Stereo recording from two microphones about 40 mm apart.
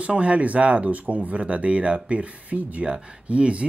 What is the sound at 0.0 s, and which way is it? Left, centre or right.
Speech, right.